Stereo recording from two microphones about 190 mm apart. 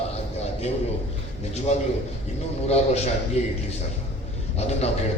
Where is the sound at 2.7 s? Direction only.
35° left (ahead or behind).